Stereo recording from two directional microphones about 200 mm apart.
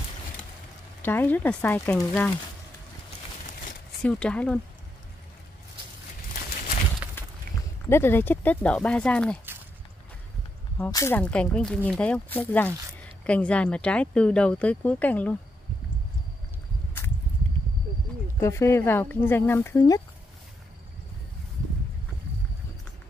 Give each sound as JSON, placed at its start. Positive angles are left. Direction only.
{"t": 1.0, "sound": "speech", "side_deg": 10}
{"t": 4.0, "sound": "speech", "side_deg": 5}
{"t": 7.5, "sound": "a sound", "side_deg": -45}
{"t": 7.9, "sound": "speech", "side_deg": 10}
{"t": 10.9, "sound": "speech", "side_deg": 15}
{"t": 18.4, "sound": "speech", "side_deg": 15}